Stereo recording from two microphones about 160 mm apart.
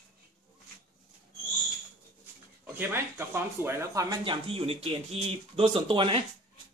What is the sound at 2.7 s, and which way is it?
Speech, 15° right (ahead or behind).